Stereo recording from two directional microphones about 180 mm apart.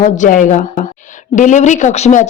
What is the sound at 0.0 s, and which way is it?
A woman's voice, 45° left (ahead or behind).